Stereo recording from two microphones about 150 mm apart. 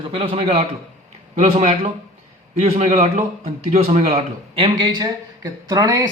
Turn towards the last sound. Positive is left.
turn(degrees=-25)  # may be behind; listen again after turning